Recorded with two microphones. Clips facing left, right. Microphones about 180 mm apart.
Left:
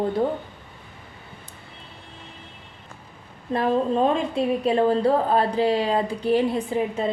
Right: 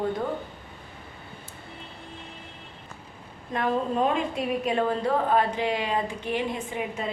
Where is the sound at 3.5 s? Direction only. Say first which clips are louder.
Left 5 dB; 30° left (ahead or behind).